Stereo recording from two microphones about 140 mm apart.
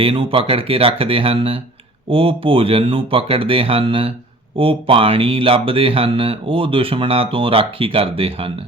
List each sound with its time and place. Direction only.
0.0 s speech: 40° right (ahead or behind)